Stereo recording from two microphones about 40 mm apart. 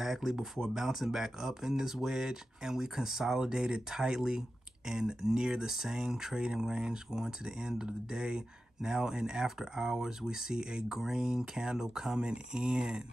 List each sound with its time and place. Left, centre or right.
0.0 s speech: centre